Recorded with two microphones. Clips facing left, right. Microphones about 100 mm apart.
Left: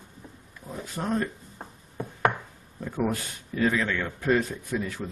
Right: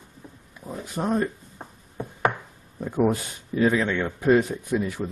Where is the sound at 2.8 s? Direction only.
15° right (ahead or behind).